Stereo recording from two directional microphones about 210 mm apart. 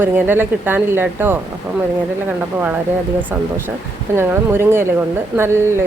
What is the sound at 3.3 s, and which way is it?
Speech, 10° right (ahead or behind).